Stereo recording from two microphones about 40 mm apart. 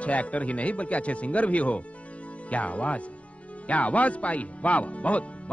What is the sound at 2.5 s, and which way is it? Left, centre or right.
Speech, left.